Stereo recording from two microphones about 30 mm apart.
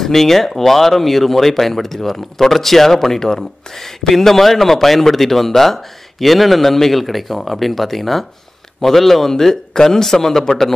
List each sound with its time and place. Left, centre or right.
0.0 s a man's voice: centre